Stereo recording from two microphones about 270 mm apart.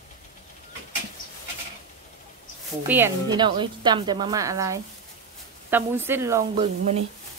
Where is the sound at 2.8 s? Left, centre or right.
Centre.